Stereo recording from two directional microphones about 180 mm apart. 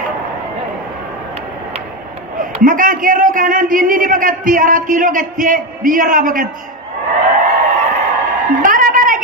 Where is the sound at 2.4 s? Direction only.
50° right (ahead or behind).